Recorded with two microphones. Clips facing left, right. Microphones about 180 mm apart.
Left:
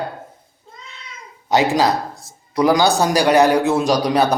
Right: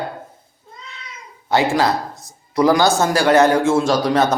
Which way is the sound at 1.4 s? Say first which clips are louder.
Left 1 dB; 20° left (ahead or behind).